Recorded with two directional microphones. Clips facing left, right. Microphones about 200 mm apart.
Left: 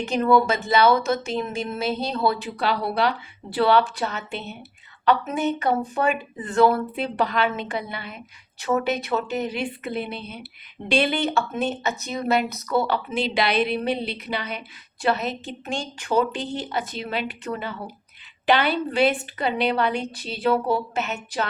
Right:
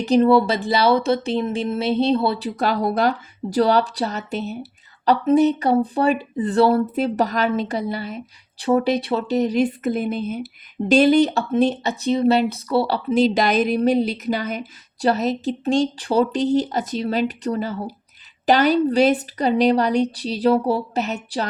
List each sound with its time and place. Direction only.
0.0 s speech: 35° right (ahead or behind)
2.6 s speech: 45° right (ahead or behind)